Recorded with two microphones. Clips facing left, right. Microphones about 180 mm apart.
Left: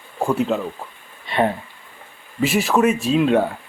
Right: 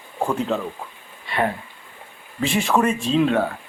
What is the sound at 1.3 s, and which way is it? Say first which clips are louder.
Speech: left 4 dB; 20° left (ahead or behind).